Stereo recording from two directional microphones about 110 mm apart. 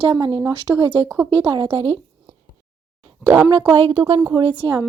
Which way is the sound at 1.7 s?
60° right (ahead or behind).